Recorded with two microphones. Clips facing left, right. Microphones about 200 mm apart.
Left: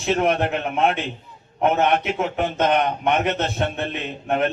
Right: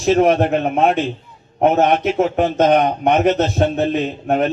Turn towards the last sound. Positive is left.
turn(degrees=-40)  # may be behind; listen again after turning